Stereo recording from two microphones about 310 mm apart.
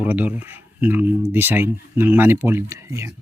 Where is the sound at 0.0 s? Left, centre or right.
Centre.